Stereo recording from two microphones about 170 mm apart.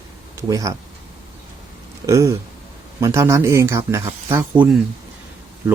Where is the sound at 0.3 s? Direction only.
20° right (ahead or behind).